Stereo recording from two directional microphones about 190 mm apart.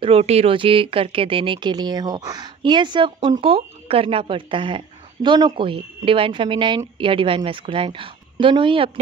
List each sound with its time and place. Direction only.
0.0 s speech: 30° right (ahead or behind)